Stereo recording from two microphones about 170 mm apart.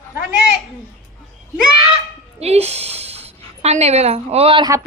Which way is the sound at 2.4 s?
40° right (ahead or behind).